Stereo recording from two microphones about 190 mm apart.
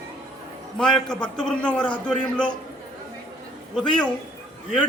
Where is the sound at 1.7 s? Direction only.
25° left (ahead or behind).